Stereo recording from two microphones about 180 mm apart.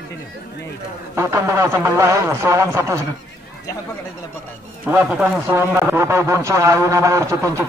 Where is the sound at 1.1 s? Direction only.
15° right (ahead or behind).